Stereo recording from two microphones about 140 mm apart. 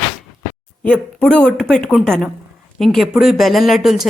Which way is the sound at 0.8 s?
10° left (ahead or behind).